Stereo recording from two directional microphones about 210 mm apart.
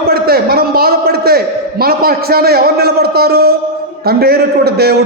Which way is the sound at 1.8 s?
45° right (ahead or behind).